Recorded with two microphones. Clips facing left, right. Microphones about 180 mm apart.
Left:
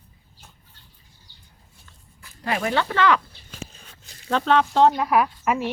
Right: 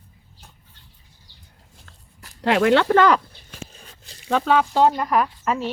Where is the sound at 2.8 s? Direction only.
45° right (ahead or behind).